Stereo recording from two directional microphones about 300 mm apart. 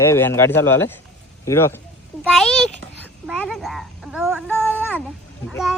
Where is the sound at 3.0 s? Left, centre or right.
Centre.